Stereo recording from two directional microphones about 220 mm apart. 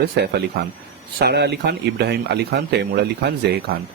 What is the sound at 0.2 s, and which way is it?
Speech, 50° right (ahead or behind).